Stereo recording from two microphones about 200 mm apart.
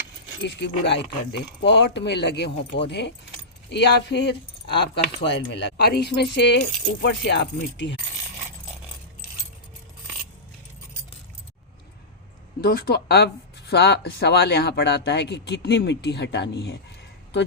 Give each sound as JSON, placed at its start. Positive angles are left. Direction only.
{"t": 0.4, "sound": "speech", "side_deg": 60}
{"t": 12.6, "sound": "speech", "side_deg": 55}